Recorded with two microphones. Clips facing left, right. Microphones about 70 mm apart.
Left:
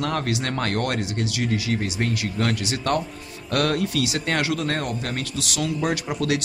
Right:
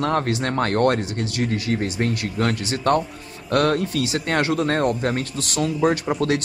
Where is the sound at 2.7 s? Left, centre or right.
Right.